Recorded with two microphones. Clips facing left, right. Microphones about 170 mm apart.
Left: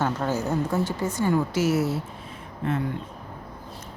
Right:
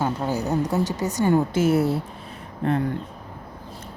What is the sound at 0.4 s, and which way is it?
Speech, 40° right (ahead or behind).